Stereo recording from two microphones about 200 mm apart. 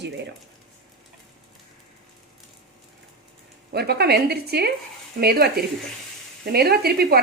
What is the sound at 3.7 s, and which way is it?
A woman's voice, 55° right (ahead or behind).